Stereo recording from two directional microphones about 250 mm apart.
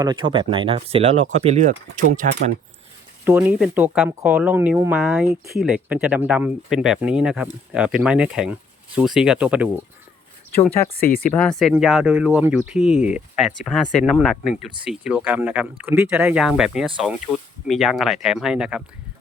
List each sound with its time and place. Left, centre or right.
0.0 s speech: centre; by 2.6 s right
3.2 s speech: centre
11.3 s speech: centre